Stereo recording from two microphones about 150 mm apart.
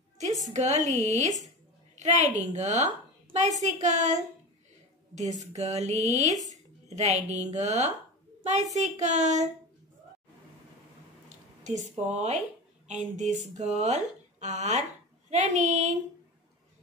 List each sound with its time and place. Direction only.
0.5 s a woman's voice: 50° right (ahead or behind)
11.2 s a woman's voice: 50° right (ahead or behind)